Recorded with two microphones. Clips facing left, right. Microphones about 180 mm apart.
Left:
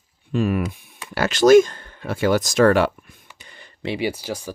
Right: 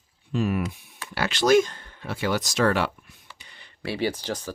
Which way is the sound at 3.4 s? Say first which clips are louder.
Left 6 dB; 45° left (ahead or behind).